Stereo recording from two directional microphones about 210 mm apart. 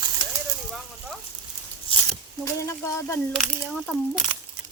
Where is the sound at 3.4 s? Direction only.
Centre (ahead or behind).